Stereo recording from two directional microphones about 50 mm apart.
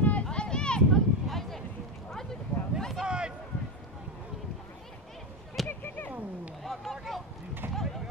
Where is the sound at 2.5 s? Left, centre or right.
Left.